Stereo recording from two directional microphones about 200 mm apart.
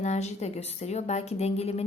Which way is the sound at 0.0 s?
35° left (ahead or behind).